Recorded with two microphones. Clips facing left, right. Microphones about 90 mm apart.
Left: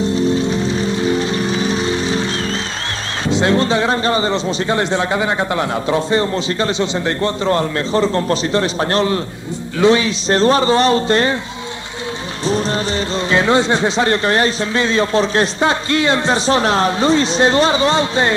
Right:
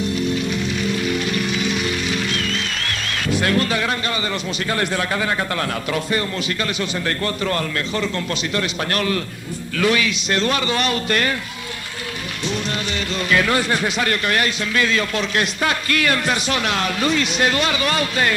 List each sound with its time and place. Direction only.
0.0 s music: 30° left (ahead or behind)
3.3 s a man's voice: 25° left (ahead or behind)
13.3 s a man's voice: 25° left (ahead or behind)